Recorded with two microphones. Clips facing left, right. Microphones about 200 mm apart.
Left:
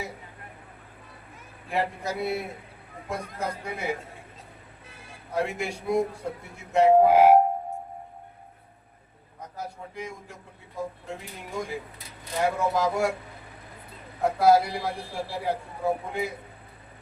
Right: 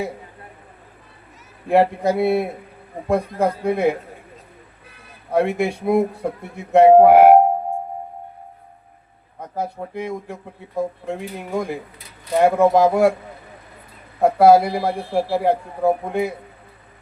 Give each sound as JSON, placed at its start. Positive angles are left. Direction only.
{"t": 1.6, "sound": "speech", "side_deg": -60}
{"t": 5.3, "sound": "speech", "side_deg": -60}
{"t": 9.4, "sound": "speech", "side_deg": -60}
{"t": 14.2, "sound": "speech", "side_deg": -60}